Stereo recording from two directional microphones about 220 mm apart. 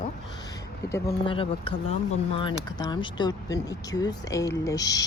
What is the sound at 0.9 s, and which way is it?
Speech, 20° left (ahead or behind).